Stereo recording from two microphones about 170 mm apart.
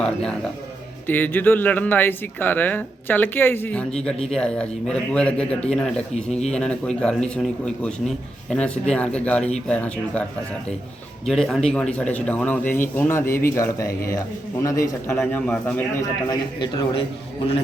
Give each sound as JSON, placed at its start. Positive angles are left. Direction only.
{"t": 0.0, "sound": "a man's voice", "side_deg": 5}
{"t": 11.3, "sound": "a man's voice", "side_deg": 0}
{"t": 16.0, "sound": "a man's voice", "side_deg": 25}